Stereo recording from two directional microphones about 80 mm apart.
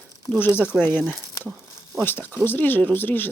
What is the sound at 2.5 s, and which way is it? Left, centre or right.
Speech, left.